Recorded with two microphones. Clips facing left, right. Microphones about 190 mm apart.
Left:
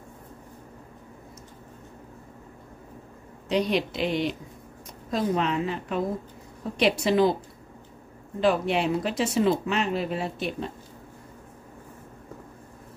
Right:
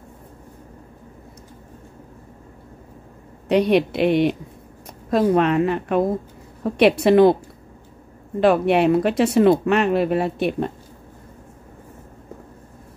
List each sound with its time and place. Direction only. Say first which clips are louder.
3.4 s speech: right 8 dB; 60° right (ahead or behind)
8.4 s speech: right 7 dB; 60° right (ahead or behind)